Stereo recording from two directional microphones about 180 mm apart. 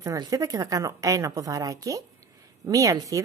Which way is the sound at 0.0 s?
20° right (ahead or behind).